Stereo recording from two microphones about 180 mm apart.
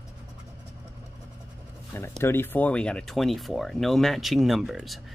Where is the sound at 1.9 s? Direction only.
15° left (ahead or behind).